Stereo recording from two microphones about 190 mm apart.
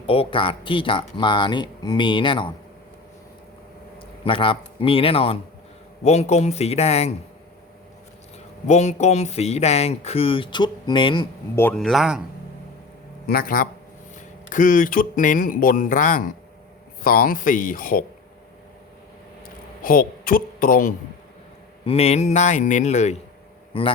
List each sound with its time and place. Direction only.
0.0 s speech: 30° left (ahead or behind)
3.9 s speech: 30° left (ahead or behind)
8.6 s speech: 35° left (ahead or behind)
11.5 s speech: 5° left (ahead or behind)
13.2 s speech: 50° left (ahead or behind)
19.8 s speech: 50° left (ahead or behind)
21.8 s speech: 35° left (ahead or behind)
23.7 s speech: 25° left (ahead or behind)